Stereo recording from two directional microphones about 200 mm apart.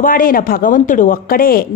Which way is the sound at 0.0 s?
45° left (ahead or behind).